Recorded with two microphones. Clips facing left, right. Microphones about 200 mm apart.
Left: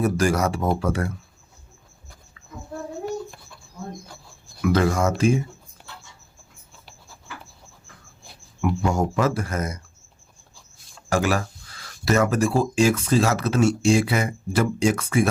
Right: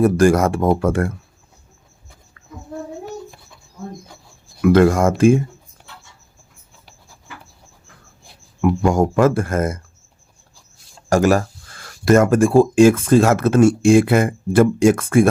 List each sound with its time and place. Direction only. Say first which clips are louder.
0.0 s speech: right 7 dB; 55° right (ahead or behind)
4.6 s speech: right 7 dB; 55° right (ahead or behind)
8.9 s speech: right 7 dB; 50° right (ahead or behind)
11.1 s speech: right 7 dB; 45° right (ahead or behind)